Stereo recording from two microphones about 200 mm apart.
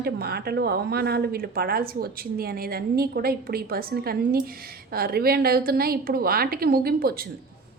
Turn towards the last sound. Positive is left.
turn(degrees=-50)  # may be behind; listen again after turning